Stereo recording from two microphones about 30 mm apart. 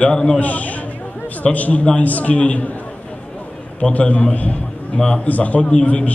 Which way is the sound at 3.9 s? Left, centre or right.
Left.